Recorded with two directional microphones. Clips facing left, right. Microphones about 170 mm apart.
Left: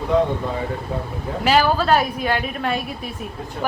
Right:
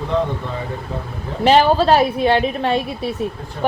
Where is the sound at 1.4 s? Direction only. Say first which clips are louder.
Right 4 dB; 30° right (ahead or behind).